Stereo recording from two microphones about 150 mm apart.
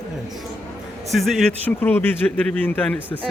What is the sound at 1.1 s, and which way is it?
Speech, centre (ahead or behind).